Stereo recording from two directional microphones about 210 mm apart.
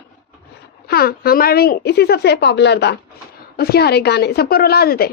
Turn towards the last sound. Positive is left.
turn(degrees=45)  # may be behind; listen again after turning